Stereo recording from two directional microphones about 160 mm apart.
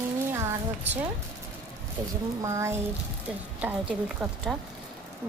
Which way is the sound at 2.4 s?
20° right (ahead or behind).